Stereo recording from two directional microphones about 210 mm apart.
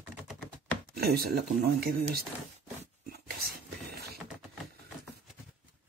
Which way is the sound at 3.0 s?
50° right (ahead or behind).